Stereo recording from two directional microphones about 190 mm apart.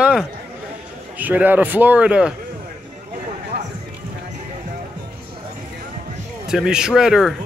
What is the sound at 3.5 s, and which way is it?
Horse, 60° right (ahead or behind).